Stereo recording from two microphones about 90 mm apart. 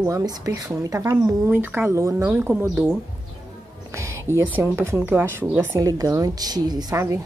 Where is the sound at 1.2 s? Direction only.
25° right (ahead or behind).